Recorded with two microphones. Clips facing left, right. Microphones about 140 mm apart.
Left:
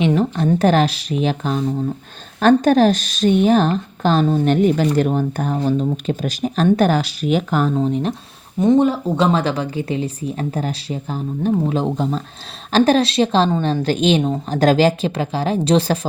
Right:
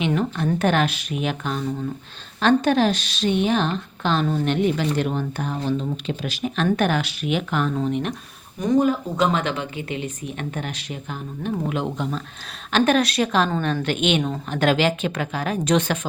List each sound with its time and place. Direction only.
0.0 s a woman's voice: 30° left (ahead or behind)